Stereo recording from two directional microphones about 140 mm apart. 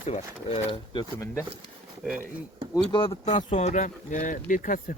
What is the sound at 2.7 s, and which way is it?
Speech, 35° left (ahead or behind).